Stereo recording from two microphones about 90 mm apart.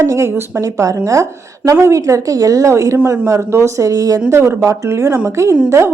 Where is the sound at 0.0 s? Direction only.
30° right (ahead or behind).